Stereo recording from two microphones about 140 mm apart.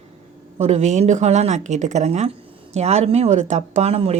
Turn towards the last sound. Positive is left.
turn(degrees=-50)  # may be behind; listen again after turning